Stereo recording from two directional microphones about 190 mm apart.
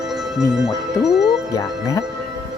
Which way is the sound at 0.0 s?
Centre (ahead or behind).